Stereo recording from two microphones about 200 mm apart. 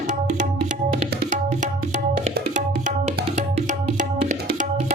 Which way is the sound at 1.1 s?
40° right (ahead or behind).